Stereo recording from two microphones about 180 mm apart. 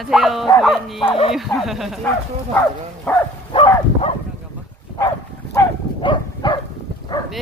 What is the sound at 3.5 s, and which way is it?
Dog, 30° left (ahead or behind).